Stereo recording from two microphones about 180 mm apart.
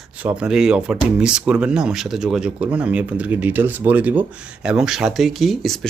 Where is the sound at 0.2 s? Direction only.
5° right (ahead or behind).